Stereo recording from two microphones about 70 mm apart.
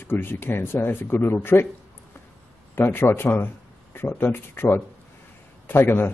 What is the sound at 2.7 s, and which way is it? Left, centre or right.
A man's voice, left.